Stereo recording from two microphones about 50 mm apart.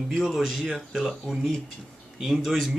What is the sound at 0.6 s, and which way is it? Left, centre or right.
Speech, centre.